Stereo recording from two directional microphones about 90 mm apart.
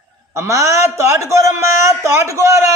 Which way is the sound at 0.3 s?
35° right (ahead or behind).